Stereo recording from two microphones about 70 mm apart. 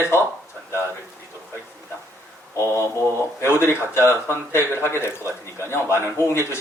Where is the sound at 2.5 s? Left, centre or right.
Left.